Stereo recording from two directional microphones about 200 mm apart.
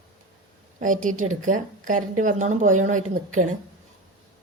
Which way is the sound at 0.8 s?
40° right (ahead or behind).